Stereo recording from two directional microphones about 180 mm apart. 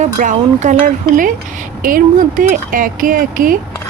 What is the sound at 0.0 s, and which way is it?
Speech, 45° right (ahead or behind).